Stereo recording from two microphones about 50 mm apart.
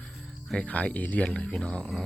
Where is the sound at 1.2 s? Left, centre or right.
Centre.